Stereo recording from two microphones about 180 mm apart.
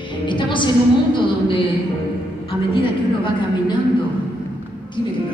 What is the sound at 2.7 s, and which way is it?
A woman's voice, 25° left (ahead or behind).